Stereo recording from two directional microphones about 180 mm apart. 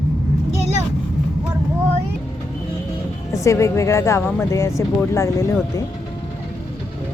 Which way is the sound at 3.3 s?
15° left (ahead or behind).